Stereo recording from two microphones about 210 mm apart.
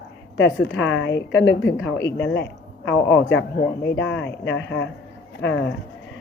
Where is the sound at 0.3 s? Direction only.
60° left (ahead or behind).